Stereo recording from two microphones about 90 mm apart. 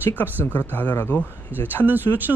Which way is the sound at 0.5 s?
20° left (ahead or behind).